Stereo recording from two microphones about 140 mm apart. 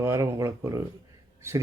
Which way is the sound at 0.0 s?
20° right (ahead or behind).